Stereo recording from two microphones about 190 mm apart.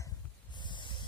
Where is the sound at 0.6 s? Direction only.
25° left (ahead or behind).